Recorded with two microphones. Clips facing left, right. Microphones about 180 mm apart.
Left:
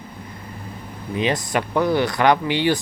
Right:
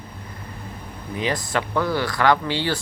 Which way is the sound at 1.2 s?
20° left (ahead or behind).